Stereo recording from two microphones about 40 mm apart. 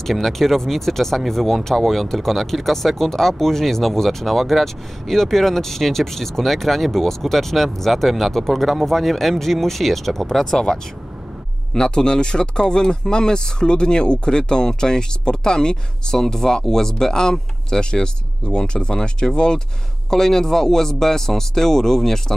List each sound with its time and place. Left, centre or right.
0.0 s a man's voice: centre